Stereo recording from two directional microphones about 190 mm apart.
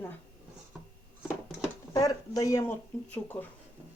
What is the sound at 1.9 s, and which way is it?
Speech, 20° left (ahead or behind).